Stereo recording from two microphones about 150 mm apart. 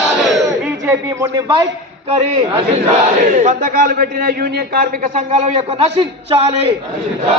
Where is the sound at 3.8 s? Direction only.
75° right (ahead or behind).